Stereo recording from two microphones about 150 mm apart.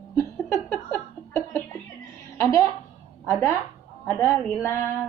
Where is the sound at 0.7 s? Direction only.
10° left (ahead or behind).